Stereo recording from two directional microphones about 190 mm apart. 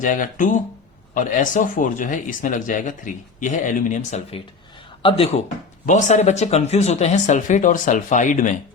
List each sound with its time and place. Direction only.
0.0 s speech: 45° left (ahead or behind)